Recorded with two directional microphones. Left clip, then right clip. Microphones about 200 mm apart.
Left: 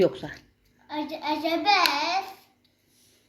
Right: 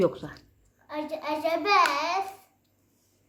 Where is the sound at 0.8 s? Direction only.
25° right (ahead or behind).